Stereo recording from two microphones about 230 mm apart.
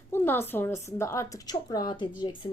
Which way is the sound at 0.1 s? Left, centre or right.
Centre.